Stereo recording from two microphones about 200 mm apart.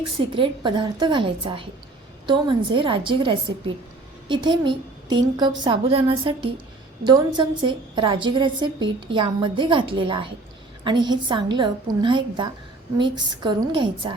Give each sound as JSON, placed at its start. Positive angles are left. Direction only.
{"t": 0.3, "sound": "a woman's voice", "side_deg": -25}